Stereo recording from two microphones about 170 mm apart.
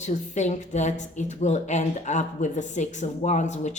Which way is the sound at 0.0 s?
45° left (ahead or behind).